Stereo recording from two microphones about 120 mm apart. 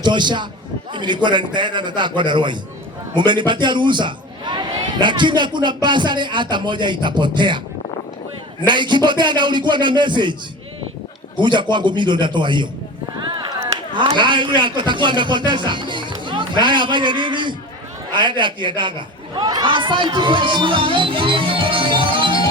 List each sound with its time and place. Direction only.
0.0 s a man's voice: 40° right (ahead or behind)
8.6 s a man's voice: 40° right (ahead or behind)
11.3 s a man's voice: 40° right (ahead or behind)
13.1 s a sound: 40° right (ahead or behind)
13.9 s speech: 40° right (ahead or behind)